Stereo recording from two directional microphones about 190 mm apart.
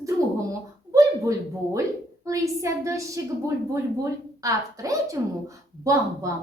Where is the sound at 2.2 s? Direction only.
15° right (ahead or behind).